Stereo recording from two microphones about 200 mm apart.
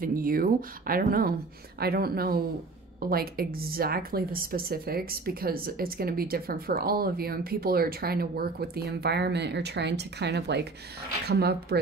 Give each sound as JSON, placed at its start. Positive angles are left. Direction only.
{"t": 0.0, "sound": "a woman's voice", "side_deg": -45}